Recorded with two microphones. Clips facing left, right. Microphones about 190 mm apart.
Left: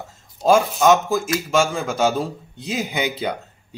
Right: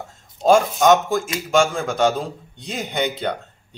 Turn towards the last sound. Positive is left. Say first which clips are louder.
# right 1 dB
turn(degrees=5)  # may be behind; listen again after turning